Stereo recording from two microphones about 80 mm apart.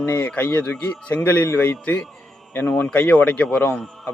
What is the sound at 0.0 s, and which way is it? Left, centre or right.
A man's voice, left.